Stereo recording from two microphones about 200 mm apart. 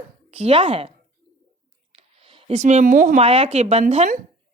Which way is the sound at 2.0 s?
30° right (ahead or behind).